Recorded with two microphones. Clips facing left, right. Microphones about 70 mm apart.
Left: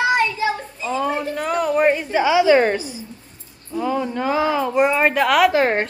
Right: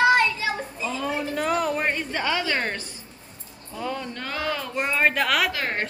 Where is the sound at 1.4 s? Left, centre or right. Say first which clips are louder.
Left 6 dB; centre.